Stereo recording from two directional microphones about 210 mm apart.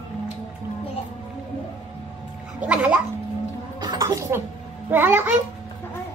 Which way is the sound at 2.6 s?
5° right (ahead or behind).